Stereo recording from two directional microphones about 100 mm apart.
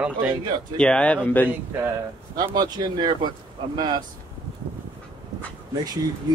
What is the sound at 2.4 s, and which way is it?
Speech, 45° right (ahead or behind).